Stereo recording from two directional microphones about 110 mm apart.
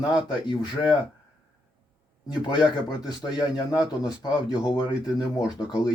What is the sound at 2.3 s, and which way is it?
A man's voice, 40° left (ahead or behind).